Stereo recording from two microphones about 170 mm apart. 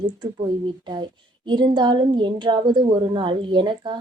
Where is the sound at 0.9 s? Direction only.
25° right (ahead or behind).